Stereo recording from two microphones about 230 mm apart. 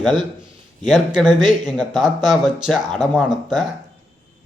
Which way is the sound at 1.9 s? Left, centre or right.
Centre.